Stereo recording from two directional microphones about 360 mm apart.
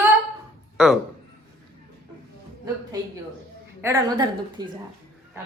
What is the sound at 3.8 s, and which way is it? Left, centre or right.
Speech, centre.